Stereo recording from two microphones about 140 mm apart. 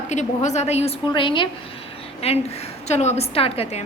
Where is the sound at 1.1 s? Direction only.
35° left (ahead or behind).